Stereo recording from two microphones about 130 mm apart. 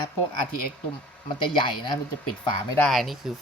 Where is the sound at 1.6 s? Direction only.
40° left (ahead or behind).